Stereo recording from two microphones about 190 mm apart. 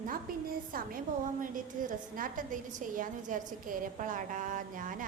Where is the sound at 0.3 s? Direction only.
50° right (ahead or behind).